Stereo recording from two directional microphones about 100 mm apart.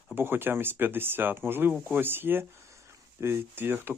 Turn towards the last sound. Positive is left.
turn(degrees=-20)  # may be behind; listen again after turning